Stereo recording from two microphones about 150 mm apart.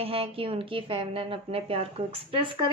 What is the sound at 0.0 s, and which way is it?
A woman's voice, 40° right (ahead or behind).